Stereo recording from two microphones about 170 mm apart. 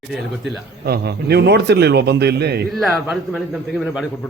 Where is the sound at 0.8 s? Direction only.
70° right (ahead or behind).